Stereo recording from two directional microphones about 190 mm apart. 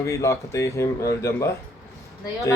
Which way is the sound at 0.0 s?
15° left (ahead or behind).